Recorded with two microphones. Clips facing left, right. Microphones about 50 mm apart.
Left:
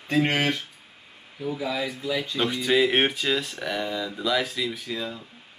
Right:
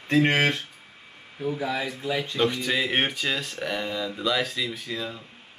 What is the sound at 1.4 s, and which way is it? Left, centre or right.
Speech, right.